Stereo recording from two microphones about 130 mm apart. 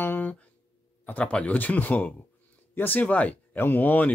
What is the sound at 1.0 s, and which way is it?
Speech, 10° left (ahead or behind).